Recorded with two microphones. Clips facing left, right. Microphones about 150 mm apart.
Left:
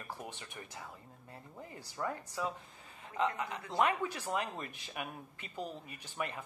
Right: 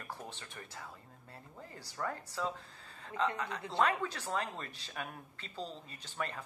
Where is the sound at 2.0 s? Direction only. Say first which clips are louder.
Even; 15° left (ahead or behind).